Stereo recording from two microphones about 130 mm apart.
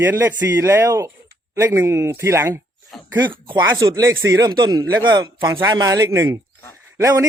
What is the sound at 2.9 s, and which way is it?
Speech, centre (ahead or behind).